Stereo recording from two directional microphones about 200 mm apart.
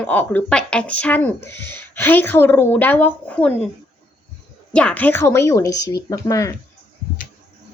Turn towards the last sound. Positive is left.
turn(degrees=15)  # may be behind; listen again after turning